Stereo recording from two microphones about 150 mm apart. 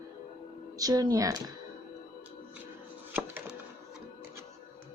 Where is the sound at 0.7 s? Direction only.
25° right (ahead or behind).